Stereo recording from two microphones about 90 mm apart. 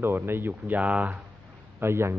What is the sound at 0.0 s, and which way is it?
A man's voice, 25° right (ahead or behind).